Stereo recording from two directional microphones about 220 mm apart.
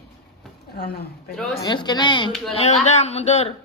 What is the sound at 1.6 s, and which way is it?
A man's voice, 20° left (ahead or behind).